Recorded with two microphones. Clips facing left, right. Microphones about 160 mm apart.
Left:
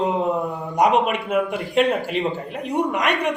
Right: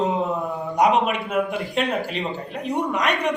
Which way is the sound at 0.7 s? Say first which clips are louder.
Left 1 dB; centre (ahead or behind).